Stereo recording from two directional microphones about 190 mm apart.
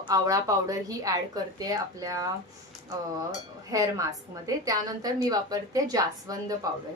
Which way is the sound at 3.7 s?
20° right (ahead or behind).